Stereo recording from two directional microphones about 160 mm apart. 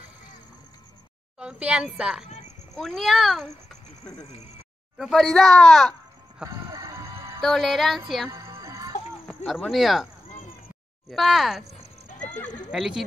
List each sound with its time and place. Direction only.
1.4 s speech: 5° right (ahead or behind)
4.9 s speech: centre (ahead or behind)
6.4 s music: 20° right (ahead or behind)
7.4 s speech: centre (ahead or behind)
8.3 s music: 20° right (ahead or behind)
9.4 s speech: 5° left (ahead or behind)
11.1 s speech: centre (ahead or behind)
12.7 s speech: centre (ahead or behind)